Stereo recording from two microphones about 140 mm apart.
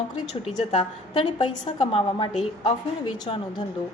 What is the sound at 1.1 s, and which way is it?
A woman's voice, 35° left (ahead or behind).